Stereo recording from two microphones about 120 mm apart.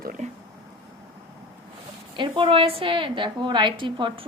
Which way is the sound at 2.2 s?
45° right (ahead or behind).